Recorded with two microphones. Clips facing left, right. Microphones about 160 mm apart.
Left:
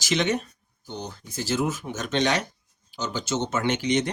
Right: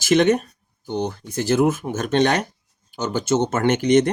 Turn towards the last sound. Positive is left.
turn(degrees=-50)  # may be behind; listen again after turning